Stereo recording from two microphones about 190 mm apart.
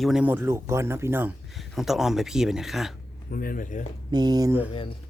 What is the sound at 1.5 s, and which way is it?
Speech, centre (ahead or behind).